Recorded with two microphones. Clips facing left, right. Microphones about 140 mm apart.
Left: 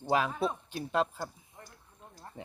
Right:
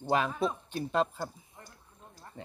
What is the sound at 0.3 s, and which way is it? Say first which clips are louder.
Speech: right 1 dB; 5° left (ahead or behind).